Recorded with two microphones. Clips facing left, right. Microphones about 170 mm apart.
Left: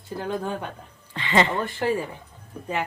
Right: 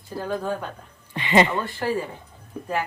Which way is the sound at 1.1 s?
15° right (ahead or behind).